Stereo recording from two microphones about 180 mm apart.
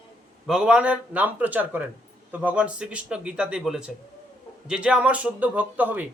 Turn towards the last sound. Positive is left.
turn(degrees=-10)  # may be behind; listen again after turning